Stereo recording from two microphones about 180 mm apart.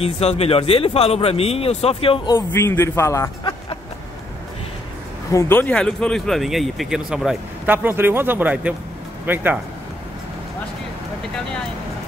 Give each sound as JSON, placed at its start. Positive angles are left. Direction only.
{"t": 0.0, "sound": "speech", "side_deg": 35}
{"t": 2.5, "sound": "a man's voice", "side_deg": 15}
{"t": 5.3, "sound": "speech", "side_deg": 15}